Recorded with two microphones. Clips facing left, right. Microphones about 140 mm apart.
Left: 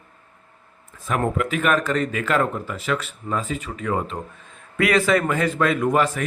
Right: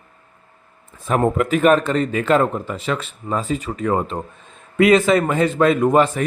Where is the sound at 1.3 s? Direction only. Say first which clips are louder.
Right 8 dB; 35° right (ahead or behind).